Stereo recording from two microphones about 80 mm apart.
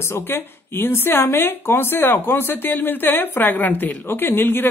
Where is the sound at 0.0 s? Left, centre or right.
Left.